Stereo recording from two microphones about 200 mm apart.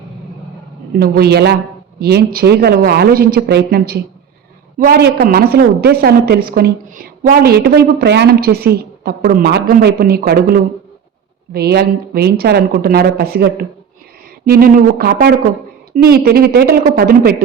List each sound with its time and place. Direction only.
0.9 s a woman's voice: 50° right (ahead or behind)